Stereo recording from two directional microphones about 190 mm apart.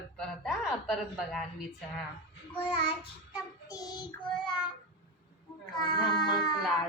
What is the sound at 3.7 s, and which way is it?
Speech, 20° left (ahead or behind).